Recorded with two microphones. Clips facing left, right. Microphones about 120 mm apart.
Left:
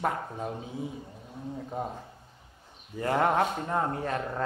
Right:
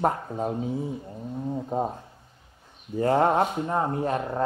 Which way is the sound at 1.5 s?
30° right (ahead or behind).